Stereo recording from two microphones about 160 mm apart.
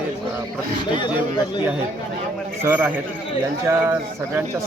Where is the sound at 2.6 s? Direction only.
15° right (ahead or behind).